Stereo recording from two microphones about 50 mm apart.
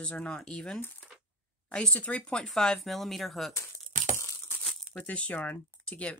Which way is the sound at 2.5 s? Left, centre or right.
Centre.